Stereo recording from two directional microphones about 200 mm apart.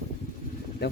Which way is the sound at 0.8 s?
55° left (ahead or behind).